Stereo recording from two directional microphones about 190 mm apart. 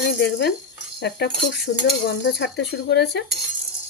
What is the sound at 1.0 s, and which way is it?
Speech, 60° left (ahead or behind).